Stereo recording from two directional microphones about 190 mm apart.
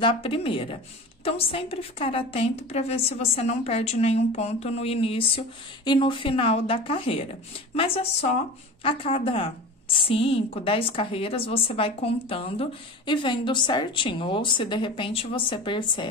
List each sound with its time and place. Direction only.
0.0 s a woman's voice: 25° left (ahead or behind)